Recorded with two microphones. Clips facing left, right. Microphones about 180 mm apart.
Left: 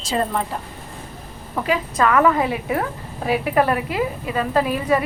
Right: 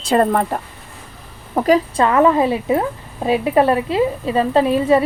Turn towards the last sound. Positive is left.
turn(degrees=-25)  # may be behind; listen again after turning